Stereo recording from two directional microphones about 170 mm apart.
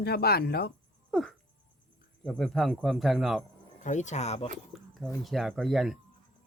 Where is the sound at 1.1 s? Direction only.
Centre (ahead or behind).